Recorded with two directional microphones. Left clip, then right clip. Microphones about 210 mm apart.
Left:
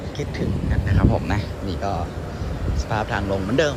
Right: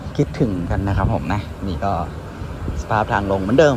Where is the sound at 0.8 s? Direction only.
Centre (ahead or behind).